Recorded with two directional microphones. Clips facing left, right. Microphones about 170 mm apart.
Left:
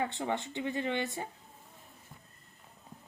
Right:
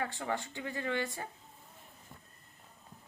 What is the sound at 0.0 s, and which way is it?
A woman's voice, 20° left (ahead or behind).